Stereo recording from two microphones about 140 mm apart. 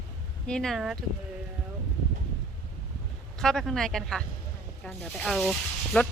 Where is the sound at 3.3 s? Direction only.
5° left (ahead or behind).